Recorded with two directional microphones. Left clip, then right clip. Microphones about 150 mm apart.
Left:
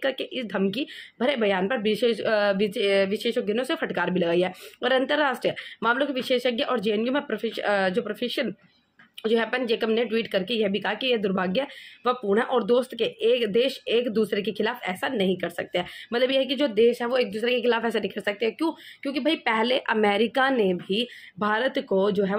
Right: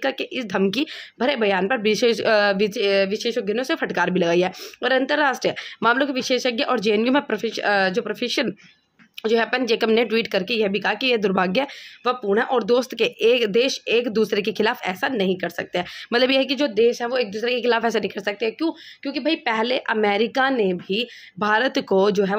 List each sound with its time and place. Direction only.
0.0 s a woman's voice: 30° right (ahead or behind)
16.1 s a woman's voice: 40° right (ahead or behind)
16.5 s a woman's voice: 20° right (ahead or behind)